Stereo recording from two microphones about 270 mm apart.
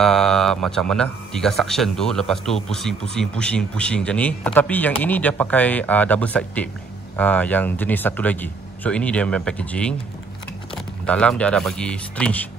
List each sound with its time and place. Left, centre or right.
0.0 s speech: centre